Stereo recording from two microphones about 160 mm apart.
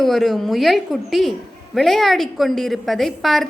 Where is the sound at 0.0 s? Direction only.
Centre (ahead or behind).